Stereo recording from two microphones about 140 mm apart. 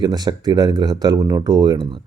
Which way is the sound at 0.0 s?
30° right (ahead or behind).